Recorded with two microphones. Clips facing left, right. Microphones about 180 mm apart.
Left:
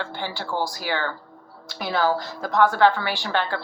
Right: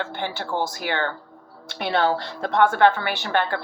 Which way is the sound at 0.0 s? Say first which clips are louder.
Right 2 dB; 20° right (ahead or behind).